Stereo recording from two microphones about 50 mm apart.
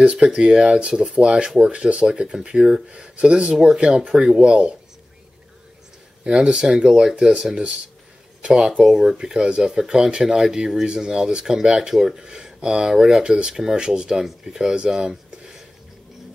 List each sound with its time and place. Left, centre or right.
0.0 s speech: right
2.9 s speech: right
6.2 s speech: centre